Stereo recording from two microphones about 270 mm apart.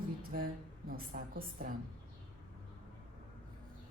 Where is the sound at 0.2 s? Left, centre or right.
Right.